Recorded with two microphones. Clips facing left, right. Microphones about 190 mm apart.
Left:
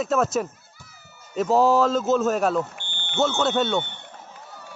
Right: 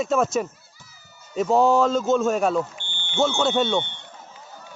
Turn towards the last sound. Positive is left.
turn(degrees=5)  # may be behind; listen again after turning